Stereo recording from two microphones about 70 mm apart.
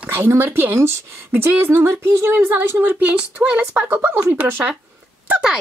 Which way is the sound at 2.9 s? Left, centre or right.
Right.